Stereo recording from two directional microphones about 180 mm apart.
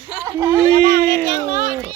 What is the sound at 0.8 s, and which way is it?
Speech, 65° left (ahead or behind).